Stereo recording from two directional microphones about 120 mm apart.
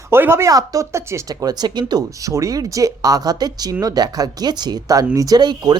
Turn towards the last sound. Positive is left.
turn(degrees=-35)  # may be behind; listen again after turning